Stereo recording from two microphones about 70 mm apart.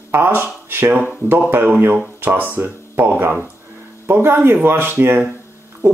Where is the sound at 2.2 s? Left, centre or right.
Right.